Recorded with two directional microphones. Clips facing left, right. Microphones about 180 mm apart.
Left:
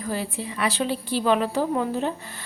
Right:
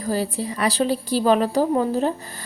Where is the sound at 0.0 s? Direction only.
35° right (ahead or behind).